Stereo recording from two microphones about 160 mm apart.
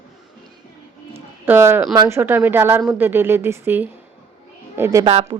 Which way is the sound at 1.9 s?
25° right (ahead or behind).